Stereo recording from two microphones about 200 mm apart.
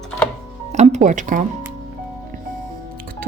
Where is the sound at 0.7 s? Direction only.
35° right (ahead or behind).